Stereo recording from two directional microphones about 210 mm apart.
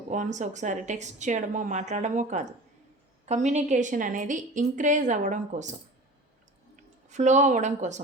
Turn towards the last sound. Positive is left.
turn(degrees=-35)  # may be behind; listen again after turning